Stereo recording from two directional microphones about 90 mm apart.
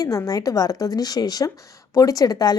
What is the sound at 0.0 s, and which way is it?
A woman's voice, 40° left (ahead or behind).